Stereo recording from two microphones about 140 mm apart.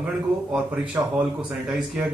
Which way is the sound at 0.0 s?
10° right (ahead or behind).